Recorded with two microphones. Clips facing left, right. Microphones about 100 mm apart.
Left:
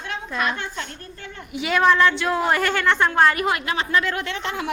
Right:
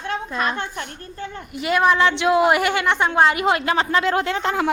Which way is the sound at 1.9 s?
20° right (ahead or behind).